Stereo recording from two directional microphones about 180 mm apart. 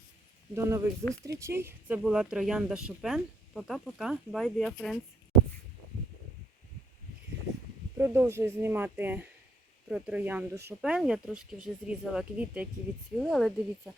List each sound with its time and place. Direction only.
0.5 s speech: 15° right (ahead or behind); by 4.9 s centre (ahead or behind)
7.9 s speech: 15° right (ahead or behind)